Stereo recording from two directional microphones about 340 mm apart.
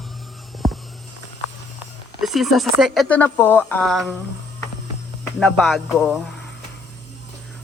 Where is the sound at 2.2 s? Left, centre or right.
Centre.